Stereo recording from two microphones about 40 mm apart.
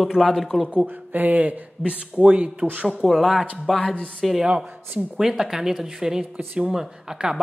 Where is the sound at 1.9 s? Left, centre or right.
Right.